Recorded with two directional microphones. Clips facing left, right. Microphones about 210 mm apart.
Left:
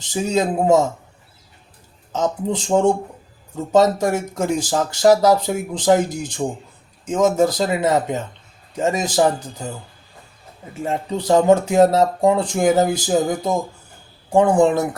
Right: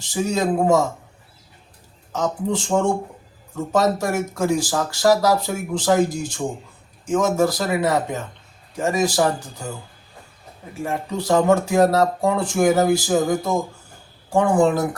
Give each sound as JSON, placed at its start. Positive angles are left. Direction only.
{"t": 0.0, "sound": "speech", "side_deg": 20}
{"t": 2.1, "sound": "speech", "side_deg": 20}
{"t": 10.8, "sound": "speech", "side_deg": 20}